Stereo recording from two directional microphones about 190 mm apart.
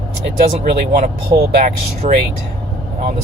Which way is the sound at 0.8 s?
45° right (ahead or behind).